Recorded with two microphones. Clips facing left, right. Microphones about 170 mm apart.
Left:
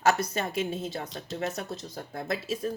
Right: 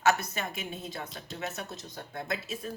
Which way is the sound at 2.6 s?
35° left (ahead or behind).